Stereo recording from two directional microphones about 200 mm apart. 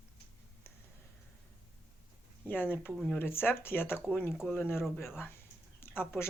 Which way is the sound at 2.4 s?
10° left (ahead or behind).